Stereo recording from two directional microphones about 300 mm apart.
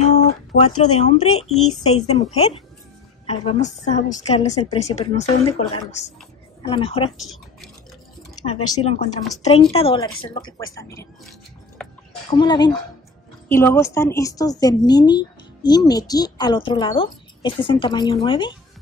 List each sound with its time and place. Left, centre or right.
0.0 s a sound: left
1.0 s a woman's voice: left
7.2 s speech: centre
8.8 s a woman's voice: left
11.8 s music: centre
12.3 s speech: centre